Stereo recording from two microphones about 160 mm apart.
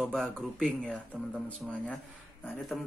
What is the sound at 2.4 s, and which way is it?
Speech, 5° left (ahead or behind).